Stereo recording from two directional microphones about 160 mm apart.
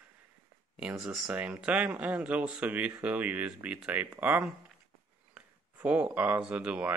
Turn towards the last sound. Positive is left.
turn(degrees=-10)  # may be behind; listen again after turning